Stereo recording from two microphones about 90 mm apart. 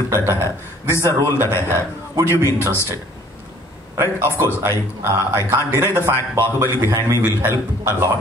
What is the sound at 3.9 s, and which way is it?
Speech, 30° right (ahead or behind).